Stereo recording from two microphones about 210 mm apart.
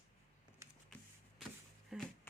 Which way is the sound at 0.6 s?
15° right (ahead or behind).